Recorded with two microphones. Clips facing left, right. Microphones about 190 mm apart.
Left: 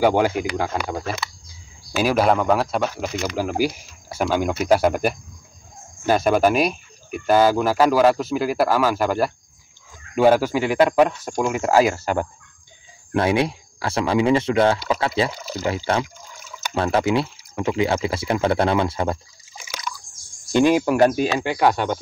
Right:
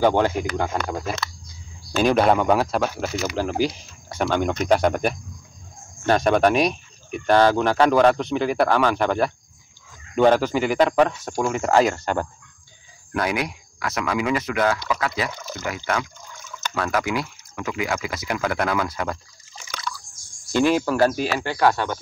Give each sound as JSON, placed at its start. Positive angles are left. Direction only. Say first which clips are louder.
{"t": 0.0, "sound": "speech", "louder": "left 1 dB", "side_deg": 10}
{"t": 3.3, "sound": "speech", "louder": "left 1 dB", "side_deg": 10}
{"t": 13.1, "sound": "speech", "louder": "left 5 dB", "side_deg": 25}
{"t": 16.3, "sound": "fowl", "louder": "even", "side_deg": 10}
{"t": 16.7, "sound": "speech", "louder": "left 5 dB", "side_deg": 30}
{"t": 19.5, "sound": "liquid", "louder": "even", "side_deg": 10}
{"t": 20.5, "sound": "speech", "louder": "left 3 dB", "side_deg": 20}